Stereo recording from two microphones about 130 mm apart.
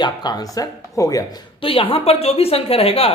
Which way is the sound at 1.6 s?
45° left (ahead or behind).